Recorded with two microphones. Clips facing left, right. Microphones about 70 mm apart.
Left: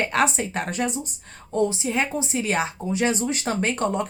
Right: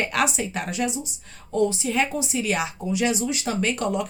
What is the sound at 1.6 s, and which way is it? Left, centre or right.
A woman's voice, left.